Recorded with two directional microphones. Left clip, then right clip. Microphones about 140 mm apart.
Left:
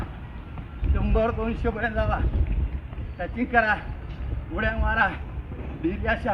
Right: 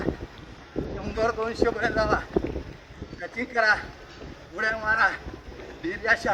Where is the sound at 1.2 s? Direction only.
20° right (ahead or behind).